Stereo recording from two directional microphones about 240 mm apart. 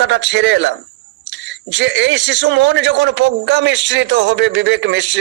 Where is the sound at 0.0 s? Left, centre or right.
Right.